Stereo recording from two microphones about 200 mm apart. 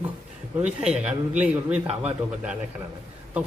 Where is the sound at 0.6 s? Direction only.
5° right (ahead or behind).